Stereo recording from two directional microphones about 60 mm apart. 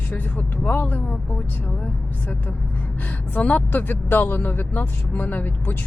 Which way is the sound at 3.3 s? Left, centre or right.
Left.